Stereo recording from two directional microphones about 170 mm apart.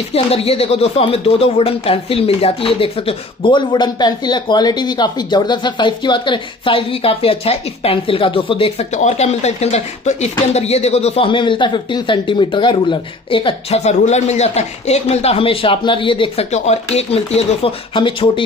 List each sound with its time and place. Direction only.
0.1 s speech: 35° left (ahead or behind)